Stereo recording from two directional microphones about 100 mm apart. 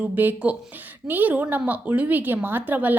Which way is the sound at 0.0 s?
15° right (ahead or behind).